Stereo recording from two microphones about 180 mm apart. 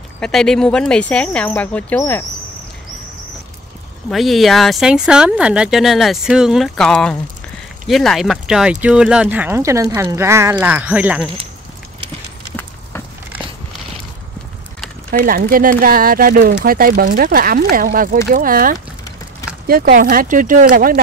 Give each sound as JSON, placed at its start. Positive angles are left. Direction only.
{"t": 0.2, "sound": "speech", "side_deg": 5}
{"t": 4.1, "sound": "speech", "side_deg": 0}
{"t": 15.2, "sound": "speech", "side_deg": -55}